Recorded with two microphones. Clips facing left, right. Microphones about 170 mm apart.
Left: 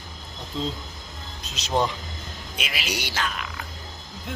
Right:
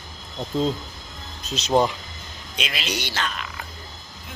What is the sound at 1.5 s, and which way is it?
Speech, 15° right (ahead or behind).